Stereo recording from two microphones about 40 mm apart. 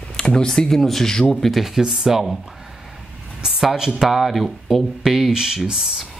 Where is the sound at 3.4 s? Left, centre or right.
Centre.